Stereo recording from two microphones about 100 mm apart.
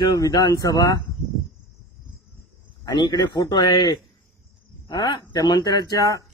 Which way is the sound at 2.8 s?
45° left (ahead or behind).